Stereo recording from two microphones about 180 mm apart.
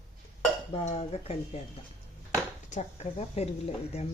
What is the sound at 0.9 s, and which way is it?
Speech, 40° left (ahead or behind).